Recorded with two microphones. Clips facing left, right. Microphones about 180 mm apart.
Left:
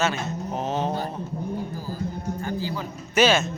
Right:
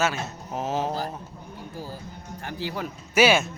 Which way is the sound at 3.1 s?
10° right (ahead or behind).